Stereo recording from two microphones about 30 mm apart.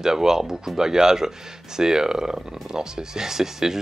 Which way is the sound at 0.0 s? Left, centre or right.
Centre.